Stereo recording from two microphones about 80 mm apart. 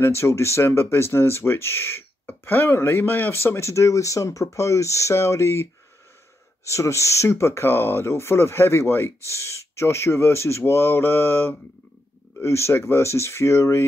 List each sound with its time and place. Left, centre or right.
0.0 s speech: left
3.4 s speech: left